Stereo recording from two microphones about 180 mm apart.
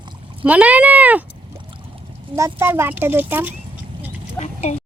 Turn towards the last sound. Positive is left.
turn(degrees=40)  # may be behind; listen again after turning